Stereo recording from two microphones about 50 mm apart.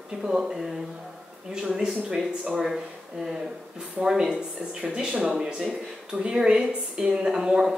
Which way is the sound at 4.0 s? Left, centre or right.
Centre.